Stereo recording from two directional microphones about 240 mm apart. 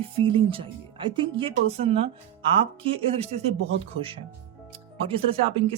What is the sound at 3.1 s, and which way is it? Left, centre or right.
Speech, right.